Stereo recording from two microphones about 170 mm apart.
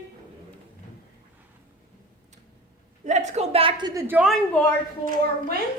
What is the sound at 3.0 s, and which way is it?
A woman's voice, 40° right (ahead or behind).